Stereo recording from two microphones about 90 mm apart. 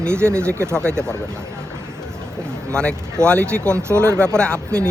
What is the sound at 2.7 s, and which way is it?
Speech, 10° left (ahead or behind).